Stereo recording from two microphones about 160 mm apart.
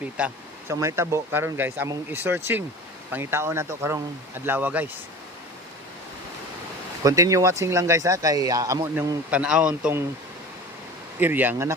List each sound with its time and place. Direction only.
0.7 s speech: 20° right (ahead or behind)
7.0 s speech: 20° right (ahead or behind)
11.2 s speech: 10° right (ahead or behind)